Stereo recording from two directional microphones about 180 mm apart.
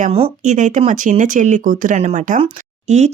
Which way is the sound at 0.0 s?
40° right (ahead or behind).